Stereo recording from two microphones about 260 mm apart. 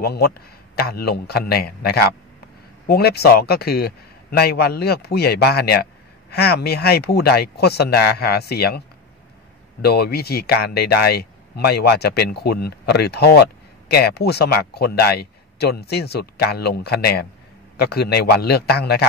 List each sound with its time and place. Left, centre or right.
0.0 s speech: left